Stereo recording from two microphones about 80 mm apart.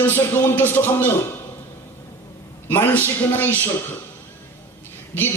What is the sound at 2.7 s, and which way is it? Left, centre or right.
A man's voice, left.